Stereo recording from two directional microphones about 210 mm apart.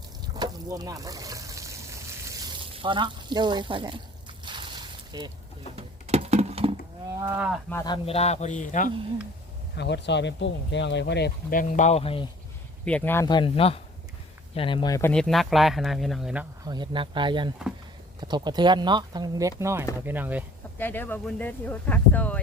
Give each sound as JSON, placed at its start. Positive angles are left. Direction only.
{"t": 0.3, "sound": "water", "side_deg": -20}
{"t": 2.2, "sound": "sizzle", "side_deg": -15}
{"t": 2.7, "sound": "speech", "side_deg": -25}
{"t": 4.4, "sound": "a sound", "side_deg": -20}
{"t": 5.7, "sound": "a sound", "side_deg": -30}
{"t": 7.2, "sound": "cattle", "side_deg": -10}
{"t": 7.7, "sound": "speech", "side_deg": 15}
{"t": 9.7, "sound": "speech", "side_deg": 55}
{"t": 12.8, "sound": "speech", "side_deg": 5}
{"t": 15.1, "sound": "speech", "side_deg": 0}
{"t": 16.6, "sound": "speech", "side_deg": -20}
{"t": 20.1, "sound": "cattle", "side_deg": -10}
{"t": 20.7, "sound": "speech", "side_deg": 10}